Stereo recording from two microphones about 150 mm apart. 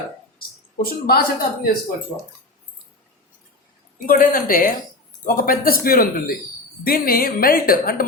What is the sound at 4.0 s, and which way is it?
A woman's voice, 65° left (ahead or behind).